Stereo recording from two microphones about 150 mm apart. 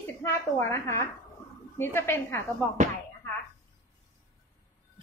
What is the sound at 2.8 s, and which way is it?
Speech, 55° right (ahead or behind).